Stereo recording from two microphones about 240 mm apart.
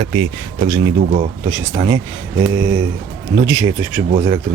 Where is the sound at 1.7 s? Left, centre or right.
Centre.